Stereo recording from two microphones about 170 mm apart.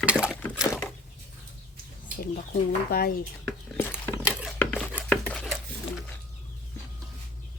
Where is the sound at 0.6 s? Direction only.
15° left (ahead or behind).